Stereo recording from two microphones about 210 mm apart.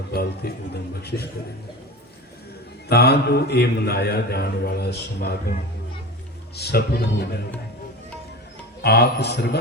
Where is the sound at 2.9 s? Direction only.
50° left (ahead or behind).